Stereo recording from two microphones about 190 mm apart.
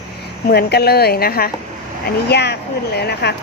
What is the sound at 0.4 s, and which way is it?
Speech, 55° left (ahead or behind).